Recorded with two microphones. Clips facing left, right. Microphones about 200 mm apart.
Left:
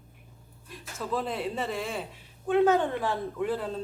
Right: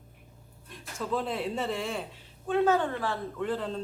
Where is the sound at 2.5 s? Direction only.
15° left (ahead or behind).